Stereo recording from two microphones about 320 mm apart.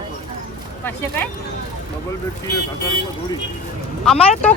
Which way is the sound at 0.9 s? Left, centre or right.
Centre.